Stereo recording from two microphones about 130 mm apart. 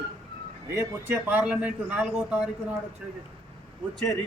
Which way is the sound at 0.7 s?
20° right (ahead or behind).